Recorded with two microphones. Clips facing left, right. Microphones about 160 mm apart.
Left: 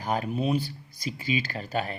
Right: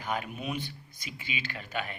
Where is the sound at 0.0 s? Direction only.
35° left (ahead or behind).